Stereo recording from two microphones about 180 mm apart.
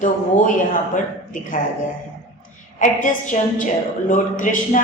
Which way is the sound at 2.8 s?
45° left (ahead or behind).